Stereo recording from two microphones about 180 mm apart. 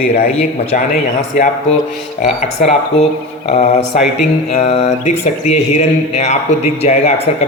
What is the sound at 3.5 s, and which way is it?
Speech, 35° left (ahead or behind).